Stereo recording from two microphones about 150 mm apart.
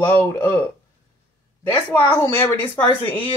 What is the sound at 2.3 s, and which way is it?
Speech, 15° left (ahead or behind).